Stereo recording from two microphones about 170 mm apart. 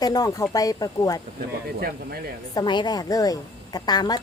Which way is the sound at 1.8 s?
65° right (ahead or behind).